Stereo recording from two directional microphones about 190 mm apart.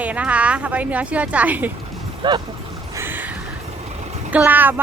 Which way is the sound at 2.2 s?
25° right (ahead or behind).